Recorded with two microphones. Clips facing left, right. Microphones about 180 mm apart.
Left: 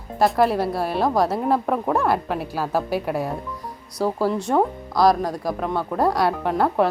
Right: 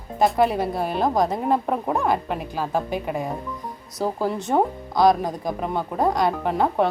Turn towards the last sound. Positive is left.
turn(degrees=5)  # may be behind; listen again after turning